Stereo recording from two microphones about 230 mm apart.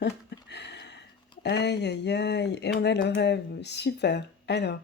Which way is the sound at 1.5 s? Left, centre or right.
Left.